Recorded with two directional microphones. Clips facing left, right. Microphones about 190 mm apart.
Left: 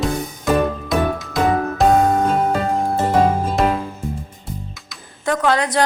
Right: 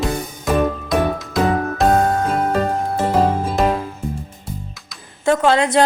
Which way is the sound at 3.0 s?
Centre (ahead or behind).